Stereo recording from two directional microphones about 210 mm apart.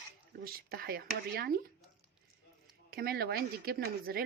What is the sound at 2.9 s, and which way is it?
Speech, 50° right (ahead or behind).